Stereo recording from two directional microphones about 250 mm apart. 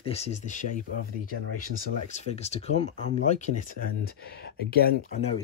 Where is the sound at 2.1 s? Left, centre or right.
Left.